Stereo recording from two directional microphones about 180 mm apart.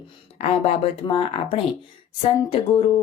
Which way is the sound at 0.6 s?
30° left (ahead or behind).